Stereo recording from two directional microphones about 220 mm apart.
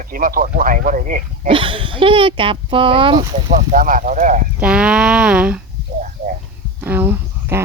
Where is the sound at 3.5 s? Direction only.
40° right (ahead or behind).